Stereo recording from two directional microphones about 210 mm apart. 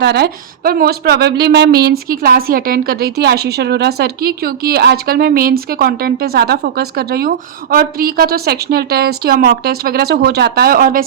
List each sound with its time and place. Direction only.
0.0 s a woman's voice: 50° right (ahead or behind)